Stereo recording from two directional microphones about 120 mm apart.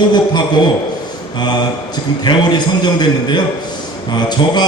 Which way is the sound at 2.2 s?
35° left (ahead or behind).